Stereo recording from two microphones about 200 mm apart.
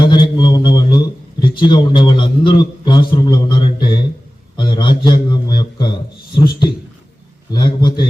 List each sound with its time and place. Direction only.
0.0 s a sound: 20° left (ahead or behind)
4.5 s a man's voice: 25° left (ahead or behind)
7.5 s a man's voice: 20° left (ahead or behind)